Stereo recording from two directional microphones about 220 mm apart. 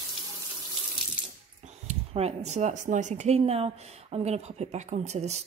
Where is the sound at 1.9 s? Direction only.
30° right (ahead or behind).